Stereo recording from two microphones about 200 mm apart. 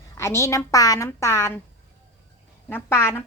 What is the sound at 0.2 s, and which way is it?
A woman's voice, 15° left (ahead or behind).